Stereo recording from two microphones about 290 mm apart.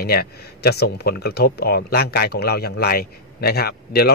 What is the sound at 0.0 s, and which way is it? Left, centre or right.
Speech, left.